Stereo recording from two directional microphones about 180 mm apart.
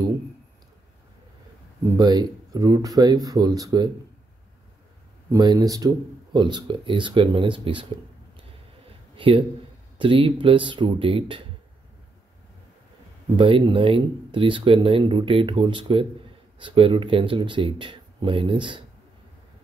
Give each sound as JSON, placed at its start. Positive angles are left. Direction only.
{"t": 2.0, "sound": "speech", "side_deg": -20}
{"t": 5.3, "sound": "speech", "side_deg": -20}
{"t": 9.1, "sound": "a man's voice", "side_deg": -30}
{"t": 13.4, "sound": "speech", "side_deg": -30}